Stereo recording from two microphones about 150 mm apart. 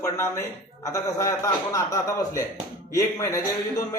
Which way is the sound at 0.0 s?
20° left (ahead or behind).